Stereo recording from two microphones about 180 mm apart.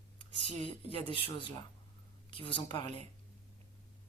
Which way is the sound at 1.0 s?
30° left (ahead or behind).